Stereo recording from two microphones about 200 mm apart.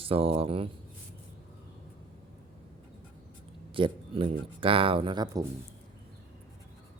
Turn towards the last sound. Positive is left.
turn(degrees=-20)  # may be behind; listen again after turning